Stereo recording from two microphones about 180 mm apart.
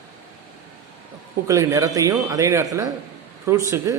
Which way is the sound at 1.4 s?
20° right (ahead or behind).